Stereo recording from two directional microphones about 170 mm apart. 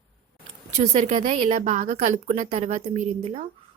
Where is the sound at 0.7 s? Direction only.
40° right (ahead or behind).